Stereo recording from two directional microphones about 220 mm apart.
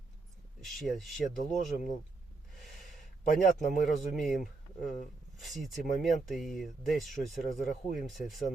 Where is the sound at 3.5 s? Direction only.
35° left (ahead or behind).